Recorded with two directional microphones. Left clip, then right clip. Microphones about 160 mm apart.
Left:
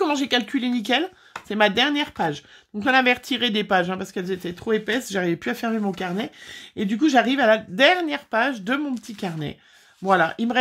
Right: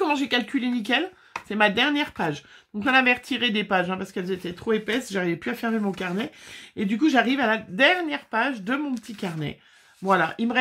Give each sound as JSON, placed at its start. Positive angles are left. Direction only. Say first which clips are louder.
{"t": 0.0, "sound": "speech", "louder": "left 2 dB", "side_deg": 40}